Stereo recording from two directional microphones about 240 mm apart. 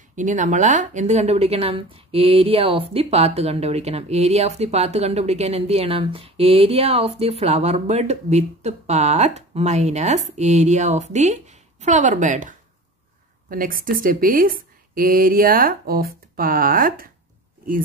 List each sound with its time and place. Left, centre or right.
0.1 s speech: right